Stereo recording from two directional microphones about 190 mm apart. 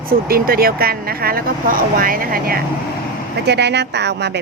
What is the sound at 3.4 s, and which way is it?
Speech, 65° right (ahead or behind).